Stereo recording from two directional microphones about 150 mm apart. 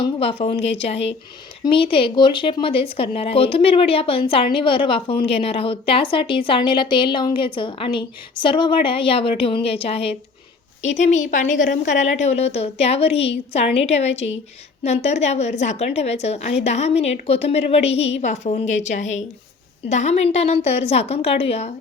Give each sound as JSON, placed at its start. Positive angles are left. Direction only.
{"t": 0.0, "sound": "a woman's voice", "side_deg": 40}
{"t": 10.8, "sound": "a woman's voice", "side_deg": 50}